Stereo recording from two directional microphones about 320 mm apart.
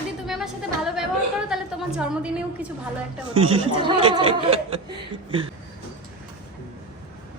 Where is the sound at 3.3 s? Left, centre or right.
Centre.